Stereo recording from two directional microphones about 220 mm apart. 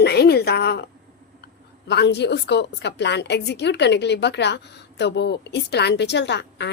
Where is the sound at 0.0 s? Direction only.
45° left (ahead or behind).